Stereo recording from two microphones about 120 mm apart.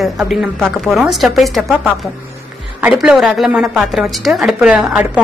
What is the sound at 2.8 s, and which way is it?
A woman's voice, 5° right (ahead or behind).